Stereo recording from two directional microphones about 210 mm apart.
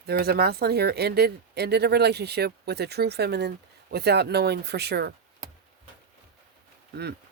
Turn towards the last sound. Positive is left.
turn(degrees=-50)  # may be behind; listen again after turning